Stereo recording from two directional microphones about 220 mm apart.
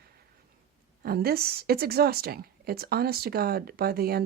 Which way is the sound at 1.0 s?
45° right (ahead or behind).